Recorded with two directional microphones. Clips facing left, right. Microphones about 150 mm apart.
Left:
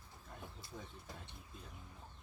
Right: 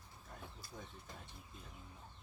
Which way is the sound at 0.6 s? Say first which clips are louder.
Left 2 dB; 25° left (ahead or behind).